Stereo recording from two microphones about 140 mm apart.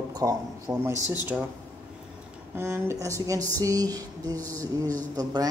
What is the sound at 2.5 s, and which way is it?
A woman's voice, 15° right (ahead or behind).